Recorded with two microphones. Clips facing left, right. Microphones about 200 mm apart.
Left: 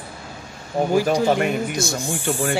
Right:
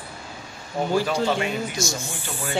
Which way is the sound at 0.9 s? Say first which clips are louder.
Left 4 dB; 15° left (ahead or behind).